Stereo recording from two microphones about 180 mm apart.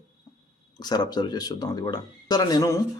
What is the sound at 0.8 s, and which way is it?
A man's voice, 25° left (ahead or behind).